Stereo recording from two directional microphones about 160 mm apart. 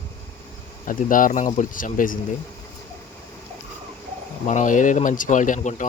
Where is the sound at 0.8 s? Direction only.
55° left (ahead or behind).